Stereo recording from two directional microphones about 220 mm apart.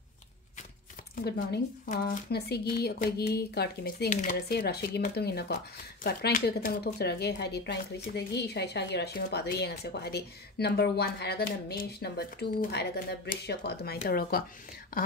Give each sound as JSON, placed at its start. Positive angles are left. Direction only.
{"t": 1.1, "sound": "speech", "side_deg": 45}
{"t": 4.1, "sound": "speech", "side_deg": 35}
{"t": 4.5, "sound": "speech", "side_deg": 45}